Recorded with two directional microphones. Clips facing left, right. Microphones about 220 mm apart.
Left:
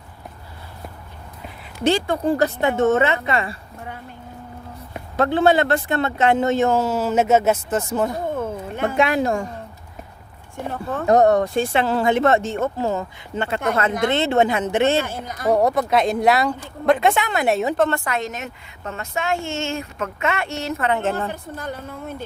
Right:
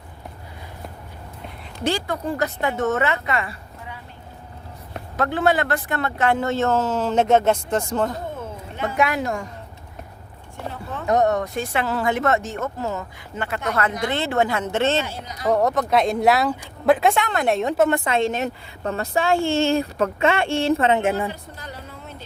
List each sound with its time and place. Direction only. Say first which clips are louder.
1.8 s speech: left 5 dB; 20° left (ahead or behind)
5.1 s speech: left 4 dB; 25° left (ahead or behind); by 8.1 s 5° left (ahead or behind)
8.4 s a sound: left 5 dB; 55° left (ahead or behind)
9.0 s speech: left 3 dB; 30° left (ahead or behind)
10.7 s speech: left 6 dB; 50° left (ahead or behind)
11.0 s speech: left 4 dB; 35° left (ahead or behind); by 15.0 s 15° left (ahead or behind)
15.0 s speech: left 3 dB; 50° left (ahead or behind)
15.4 s a woman's voice: left 2 dB; 10° left (ahead or behind)
17.7 s a woman's voice: right 2 dB; 15° right (ahead or behind)
21.0 s a woman's voice: right 1 dB; 10° right (ahead or behind)
21.5 s a woman's voice: left 7 dB; 50° left (ahead or behind)